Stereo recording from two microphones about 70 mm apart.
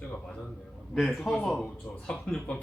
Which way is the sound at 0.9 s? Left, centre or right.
Centre.